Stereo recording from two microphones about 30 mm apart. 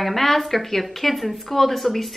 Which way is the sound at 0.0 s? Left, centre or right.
Centre.